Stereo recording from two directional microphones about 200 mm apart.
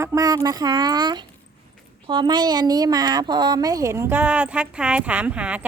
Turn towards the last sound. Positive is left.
turn(degrees=-5)  # may be behind; listen again after turning